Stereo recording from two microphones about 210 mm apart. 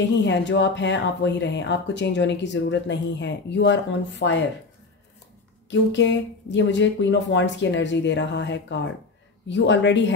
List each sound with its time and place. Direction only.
0.2 s speech: 60° left (ahead or behind)
5.7 s speech: 60° left (ahead or behind)